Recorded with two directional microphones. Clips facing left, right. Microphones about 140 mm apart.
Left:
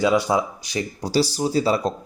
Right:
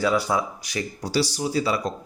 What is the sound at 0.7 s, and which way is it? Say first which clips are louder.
Speech: left 3 dB; 30° left (ahead or behind).